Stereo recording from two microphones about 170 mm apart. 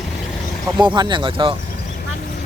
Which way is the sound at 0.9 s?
25° right (ahead or behind).